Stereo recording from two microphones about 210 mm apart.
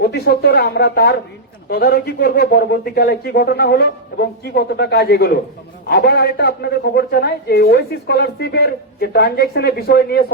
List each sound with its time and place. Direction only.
0.0 s a man's voice: 50° left (ahead or behind)